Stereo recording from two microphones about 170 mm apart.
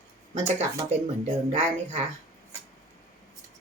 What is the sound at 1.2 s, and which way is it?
Speech, 40° right (ahead or behind).